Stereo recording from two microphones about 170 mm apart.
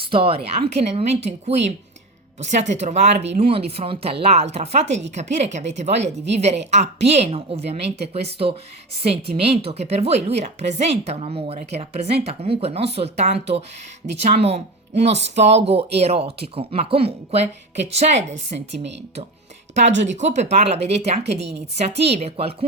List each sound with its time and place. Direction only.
0.0 s speech: 30° right (ahead or behind)
20.1 s speech: 45° right (ahead or behind)